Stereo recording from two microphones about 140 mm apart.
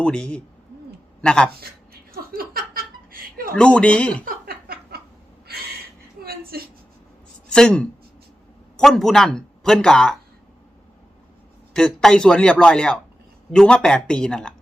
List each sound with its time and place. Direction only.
0.0 s speech: 10° left (ahead or behind)
1.6 s a sound: 90° right
3.5 s speech: 5° left (ahead or behind)
6.2 s a sound: 90° right
7.5 s speech: 5° left (ahead or behind)
11.7 s speech: 5° left (ahead or behind)